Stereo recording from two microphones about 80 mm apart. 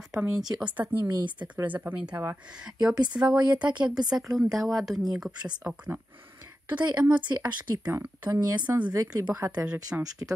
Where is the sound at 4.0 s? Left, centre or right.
Centre.